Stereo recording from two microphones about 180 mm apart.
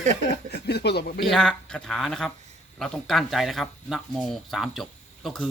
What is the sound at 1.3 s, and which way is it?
Speech, 5° left (ahead or behind).